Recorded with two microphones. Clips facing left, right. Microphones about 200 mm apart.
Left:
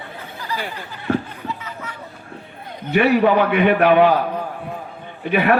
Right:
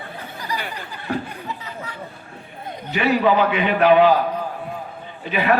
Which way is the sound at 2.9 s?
60° left (ahead or behind).